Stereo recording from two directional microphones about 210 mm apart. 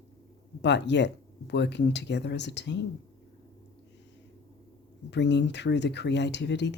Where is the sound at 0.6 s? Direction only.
55° left (ahead or behind).